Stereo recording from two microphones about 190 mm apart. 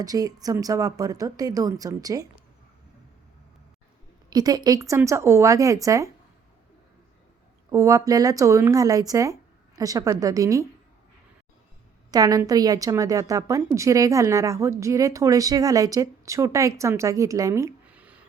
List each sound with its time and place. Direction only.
0.0 s a woman's voice: 20° right (ahead or behind)
4.3 s a woman's voice: 20° right (ahead or behind)
7.7 s a woman's voice: 15° right (ahead or behind)
12.1 s a woman's voice: 20° right (ahead or behind)